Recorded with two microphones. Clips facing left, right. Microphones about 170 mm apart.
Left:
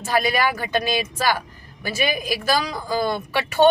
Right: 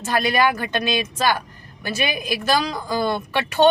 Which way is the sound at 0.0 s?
10° left (ahead or behind).